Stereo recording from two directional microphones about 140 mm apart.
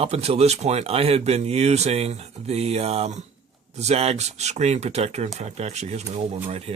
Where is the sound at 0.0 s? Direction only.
45° right (ahead or behind).